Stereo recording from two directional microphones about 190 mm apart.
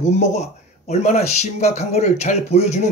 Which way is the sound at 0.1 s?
35° left (ahead or behind).